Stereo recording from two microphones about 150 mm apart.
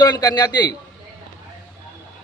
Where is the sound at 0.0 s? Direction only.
25° left (ahead or behind).